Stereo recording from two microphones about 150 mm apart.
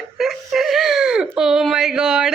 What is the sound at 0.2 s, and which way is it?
Whimper, centre (ahead or behind).